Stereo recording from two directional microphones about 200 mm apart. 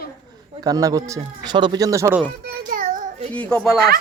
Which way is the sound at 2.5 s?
45° right (ahead or behind).